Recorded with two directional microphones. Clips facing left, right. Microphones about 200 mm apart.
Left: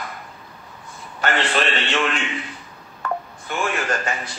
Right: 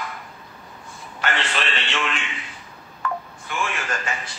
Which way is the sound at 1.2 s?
40° left (ahead or behind).